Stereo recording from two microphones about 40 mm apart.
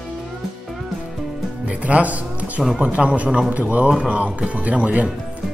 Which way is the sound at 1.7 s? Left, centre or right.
Right.